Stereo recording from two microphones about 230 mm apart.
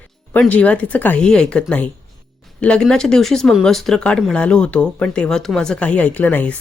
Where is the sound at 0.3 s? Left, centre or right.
Centre.